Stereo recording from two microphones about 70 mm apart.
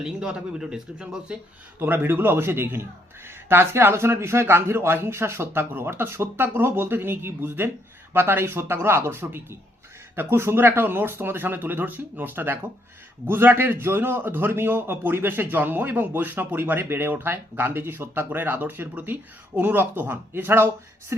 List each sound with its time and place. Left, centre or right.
0.0 s speech: centre
1.8 s a man's voice: right
21.1 s a sound: right